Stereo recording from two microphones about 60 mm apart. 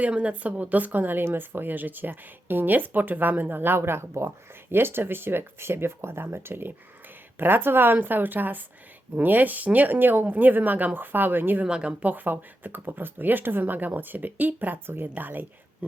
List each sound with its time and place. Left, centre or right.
0.1 s speech: right
11.6 s speech: centre
12.1 s speech: right